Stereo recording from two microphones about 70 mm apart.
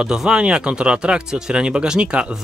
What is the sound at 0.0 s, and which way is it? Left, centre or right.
Speech, centre.